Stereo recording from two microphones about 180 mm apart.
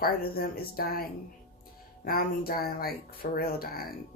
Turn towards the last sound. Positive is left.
turn(degrees=55)  # may be behind; listen again after turning